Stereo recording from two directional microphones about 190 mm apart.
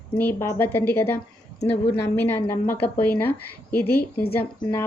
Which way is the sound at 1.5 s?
30° left (ahead or behind).